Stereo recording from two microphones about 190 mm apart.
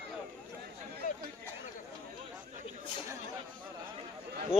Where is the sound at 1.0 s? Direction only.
45° left (ahead or behind).